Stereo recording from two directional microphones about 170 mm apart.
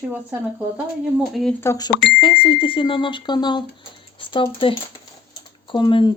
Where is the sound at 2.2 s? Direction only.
30° left (ahead or behind).